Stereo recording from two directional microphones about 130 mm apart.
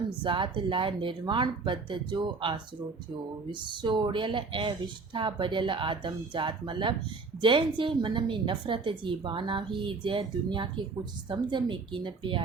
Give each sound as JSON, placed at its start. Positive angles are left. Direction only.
{"t": 0.2, "sound": "a woman's voice", "side_deg": -40}